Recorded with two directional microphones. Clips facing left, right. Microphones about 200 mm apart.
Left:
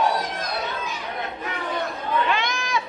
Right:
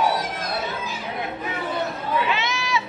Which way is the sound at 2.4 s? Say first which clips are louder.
Right 1 dB; 50° left (ahead or behind).